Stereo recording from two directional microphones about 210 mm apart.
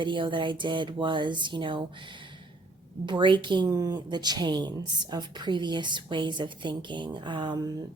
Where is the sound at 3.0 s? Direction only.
20° right (ahead or behind).